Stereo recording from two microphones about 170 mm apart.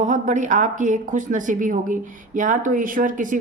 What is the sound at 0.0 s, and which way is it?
A woman's voice, 45° right (ahead or behind).